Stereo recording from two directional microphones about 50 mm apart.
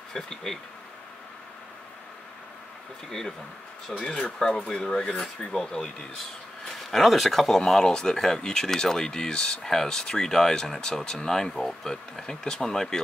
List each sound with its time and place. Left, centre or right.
0.1 s speech: centre
3.1 s speech: centre